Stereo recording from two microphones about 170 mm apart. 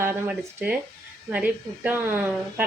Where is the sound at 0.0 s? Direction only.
10° right (ahead or behind).